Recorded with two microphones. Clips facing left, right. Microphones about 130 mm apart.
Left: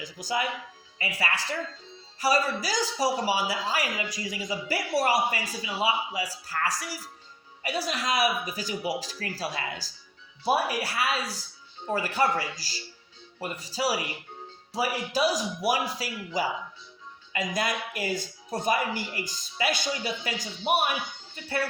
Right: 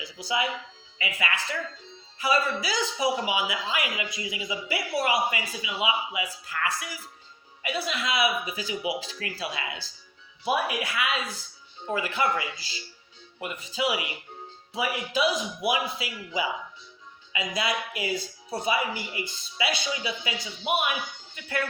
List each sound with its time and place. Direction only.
0.0 s speech: 45° left (ahead or behind)